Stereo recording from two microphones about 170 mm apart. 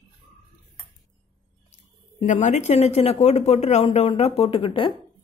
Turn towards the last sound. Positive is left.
turn(degrees=30)  # may be behind; listen again after turning